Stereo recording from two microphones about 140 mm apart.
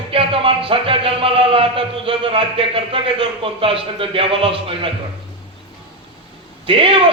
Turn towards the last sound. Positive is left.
turn(degrees=-40)  # may be behind; listen again after turning